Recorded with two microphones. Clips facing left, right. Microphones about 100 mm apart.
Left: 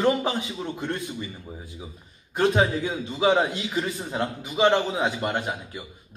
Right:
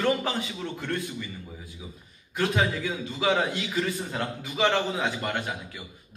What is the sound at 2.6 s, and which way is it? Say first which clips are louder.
A man's voice: left 4 dB; 30° left (ahead or behind).